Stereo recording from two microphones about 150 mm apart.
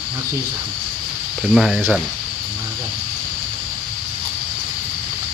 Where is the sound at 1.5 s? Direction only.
Centre (ahead or behind).